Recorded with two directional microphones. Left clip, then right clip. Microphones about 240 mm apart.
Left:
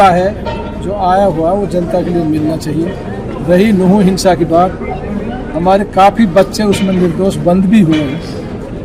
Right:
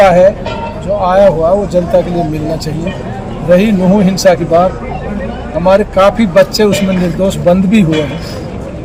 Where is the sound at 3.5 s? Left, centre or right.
Centre.